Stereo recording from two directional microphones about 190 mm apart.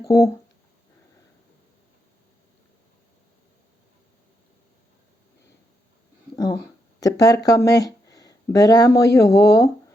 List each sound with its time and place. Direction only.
0.1 s speech: 15° left (ahead or behind)
6.3 s a sound: 20° left (ahead or behind)
7.0 s speech: 20° left (ahead or behind)